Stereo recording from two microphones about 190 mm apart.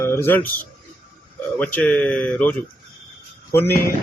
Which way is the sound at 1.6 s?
5° left (ahead or behind).